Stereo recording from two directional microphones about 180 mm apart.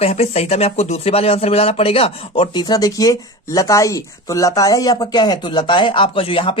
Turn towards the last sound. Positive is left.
turn(degrees=30)  # may be behind; listen again after turning